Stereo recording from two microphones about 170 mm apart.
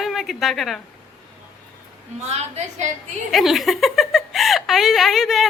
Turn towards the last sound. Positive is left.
turn(degrees=0)  # may be behind; listen again after turning